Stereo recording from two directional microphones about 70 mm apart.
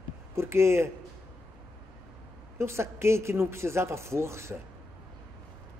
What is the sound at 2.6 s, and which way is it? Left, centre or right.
Speech, right.